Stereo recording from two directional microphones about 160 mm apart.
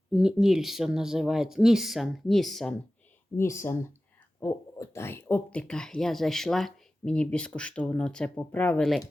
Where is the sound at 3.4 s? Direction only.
15° left (ahead or behind).